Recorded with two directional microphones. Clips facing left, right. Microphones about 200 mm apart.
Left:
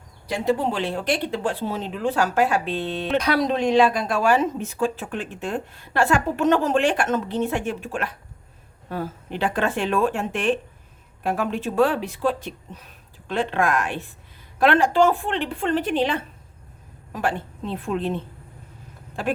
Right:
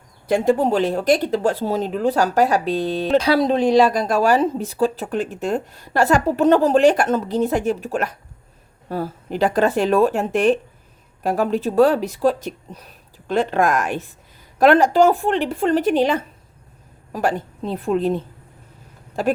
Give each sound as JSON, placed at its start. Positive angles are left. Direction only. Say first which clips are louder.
{"t": 0.3, "sound": "a woman's voice", "louder": "right 6 dB", "side_deg": -50}